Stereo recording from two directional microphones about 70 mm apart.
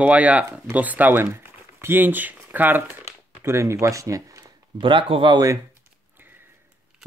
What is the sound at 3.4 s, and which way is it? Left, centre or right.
Speech, right.